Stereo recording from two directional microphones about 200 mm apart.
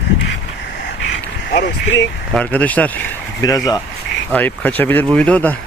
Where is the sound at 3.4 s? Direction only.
20° left (ahead or behind).